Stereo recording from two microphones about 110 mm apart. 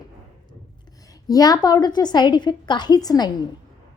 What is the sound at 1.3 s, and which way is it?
A woman's voice, 35° left (ahead or behind).